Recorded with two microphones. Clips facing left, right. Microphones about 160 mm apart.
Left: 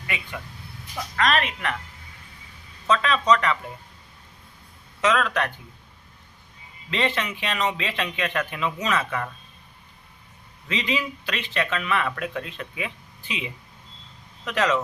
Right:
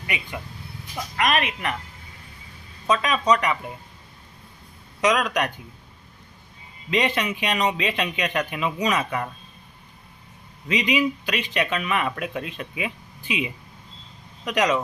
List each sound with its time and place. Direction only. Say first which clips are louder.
0.1 s speech: right 2 dB; 15° right (ahead or behind)
2.8 s speech: even; 15° right (ahead or behind)
4.9 s speech: right 1 dB; 15° right (ahead or behind)
6.9 s speech: right 3 dB; 15° right (ahead or behind)
10.7 s speech: right 5 dB; 15° right (ahead or behind)